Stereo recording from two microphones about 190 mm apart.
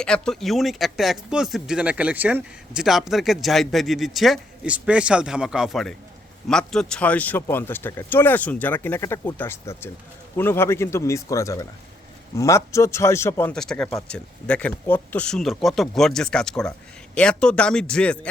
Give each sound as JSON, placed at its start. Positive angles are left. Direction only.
{"t": 0.0, "sound": "speech", "side_deg": 5}